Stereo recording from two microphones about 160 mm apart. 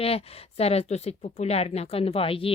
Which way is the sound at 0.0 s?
40° left (ahead or behind).